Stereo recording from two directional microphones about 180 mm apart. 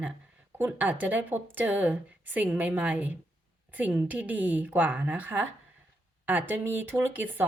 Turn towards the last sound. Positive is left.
turn(degrees=-10)  # may be behind; listen again after turning